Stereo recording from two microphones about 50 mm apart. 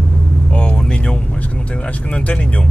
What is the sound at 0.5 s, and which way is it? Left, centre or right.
Speech, left.